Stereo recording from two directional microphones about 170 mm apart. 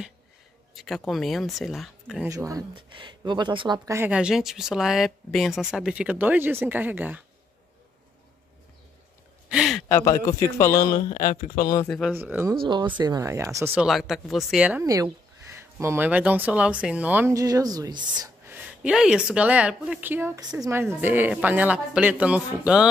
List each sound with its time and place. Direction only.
0.7 s speech: centre (ahead or behind)
2.2 s speech: 20° right (ahead or behind)
4.1 s speech: 5° right (ahead or behind)
9.5 s a sound: centre (ahead or behind)
9.8 s a man's voice: 15° left (ahead or behind)
11.1 s speech: 55° left (ahead or behind)
12.1 s speech: 10° right (ahead or behind)
12.6 s speech: 25° right (ahead or behind)
13.7 s speech: centre (ahead or behind); by 18.3 s 25° right (ahead or behind)
18.4 s speech: 10° right (ahead or behind)